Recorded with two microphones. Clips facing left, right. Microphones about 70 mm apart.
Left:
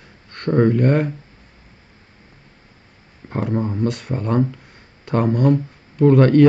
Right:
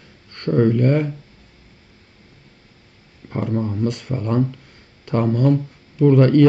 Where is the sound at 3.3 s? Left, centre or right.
Left.